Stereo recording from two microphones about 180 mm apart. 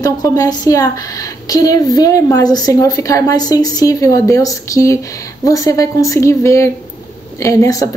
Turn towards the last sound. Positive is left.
turn(degrees=20)  # may be behind; listen again after turning